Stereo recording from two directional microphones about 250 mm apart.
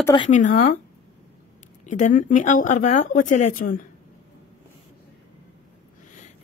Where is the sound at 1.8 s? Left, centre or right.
Left.